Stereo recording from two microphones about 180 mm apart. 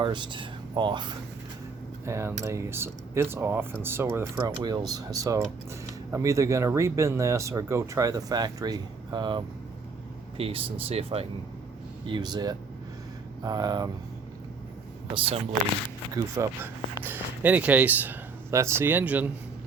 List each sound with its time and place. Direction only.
0.0 s speech: 25° right (ahead or behind)
2.0 s speech: 15° right (ahead or behind)
16.1 s speech: 15° right (ahead or behind)